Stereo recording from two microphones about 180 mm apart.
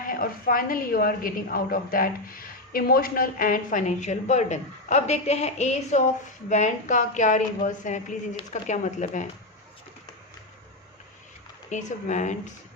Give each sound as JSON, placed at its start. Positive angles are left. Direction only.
{"t": 0.1, "sound": "a woman's voice", "side_deg": 55}
{"t": 11.7, "sound": "a woman's voice", "side_deg": 40}